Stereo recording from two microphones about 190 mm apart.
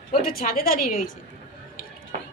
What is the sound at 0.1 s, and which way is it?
Speech, 50° left (ahead or behind).